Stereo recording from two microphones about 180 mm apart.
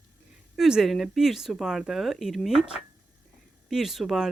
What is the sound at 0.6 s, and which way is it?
Speech, 5° right (ahead or behind).